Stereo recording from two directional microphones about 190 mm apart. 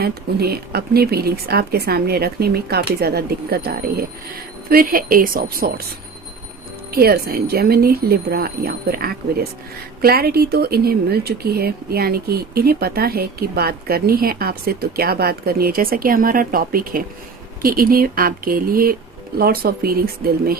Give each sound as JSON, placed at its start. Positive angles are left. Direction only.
{"t": 0.0, "sound": "speech", "side_deg": -55}
{"t": 6.9, "sound": "speech", "side_deg": -55}